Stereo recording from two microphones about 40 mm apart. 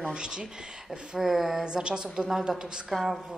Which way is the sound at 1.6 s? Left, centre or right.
Right.